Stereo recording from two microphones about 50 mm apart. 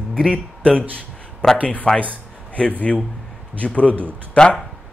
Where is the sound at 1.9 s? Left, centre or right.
Left.